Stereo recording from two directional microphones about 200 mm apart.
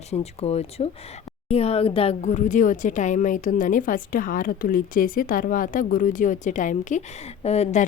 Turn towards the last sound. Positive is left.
turn(degrees=35)  # may be behind; listen again after turning